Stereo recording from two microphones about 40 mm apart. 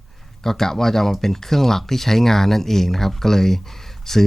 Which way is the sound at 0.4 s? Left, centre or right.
Centre.